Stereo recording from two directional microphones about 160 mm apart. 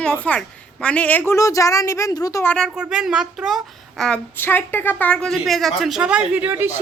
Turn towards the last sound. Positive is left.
turn(degrees=-10)  # may be behind; listen again after turning